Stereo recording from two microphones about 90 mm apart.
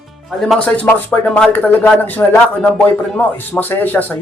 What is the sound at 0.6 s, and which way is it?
Speech, 15° left (ahead or behind).